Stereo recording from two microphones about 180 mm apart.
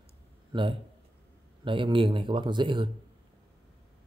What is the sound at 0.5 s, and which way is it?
A man's voice, 25° right (ahead or behind).